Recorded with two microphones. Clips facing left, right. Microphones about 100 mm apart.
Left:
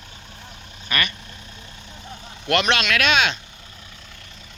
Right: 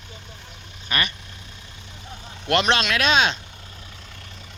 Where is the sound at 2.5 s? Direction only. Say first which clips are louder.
Even; 30° right (ahead or behind).